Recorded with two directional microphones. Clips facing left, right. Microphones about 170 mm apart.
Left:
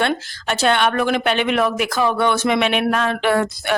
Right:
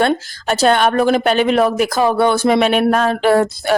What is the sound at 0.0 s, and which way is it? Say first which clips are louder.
Speech: right 5 dB; 40° right (ahead or behind).